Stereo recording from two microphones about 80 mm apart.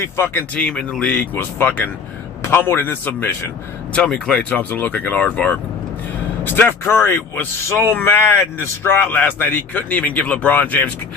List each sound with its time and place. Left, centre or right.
0.2 s a man's voice: left
0.6 s a man's voice: centre
3.9 s speech: centre
6.4 s a man's voice: left